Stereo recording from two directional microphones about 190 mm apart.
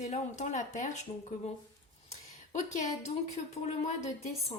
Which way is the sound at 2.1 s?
40° left (ahead or behind).